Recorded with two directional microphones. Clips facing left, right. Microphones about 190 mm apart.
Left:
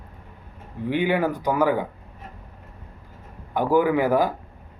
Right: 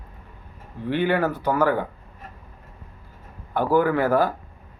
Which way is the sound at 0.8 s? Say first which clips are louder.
Even; 15° left (ahead or behind).